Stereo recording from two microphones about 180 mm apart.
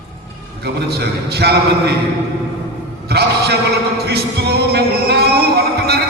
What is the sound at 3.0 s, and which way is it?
Speech, 65° right (ahead or behind).